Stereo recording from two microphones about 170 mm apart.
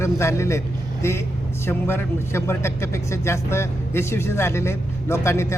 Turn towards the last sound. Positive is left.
turn(degrees=15)  # may be behind; listen again after turning